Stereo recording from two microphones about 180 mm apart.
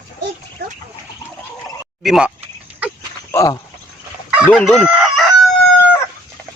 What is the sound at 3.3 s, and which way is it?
Speech, 15° left (ahead or behind).